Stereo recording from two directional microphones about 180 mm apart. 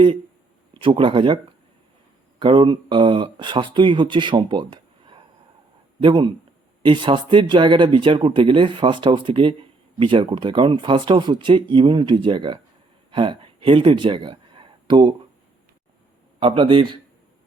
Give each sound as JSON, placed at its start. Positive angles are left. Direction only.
{"t": 0.8, "sound": "speech", "side_deg": -30}
{"t": 2.4, "sound": "speech", "side_deg": -25}
{"t": 16.4, "sound": "speech", "side_deg": -30}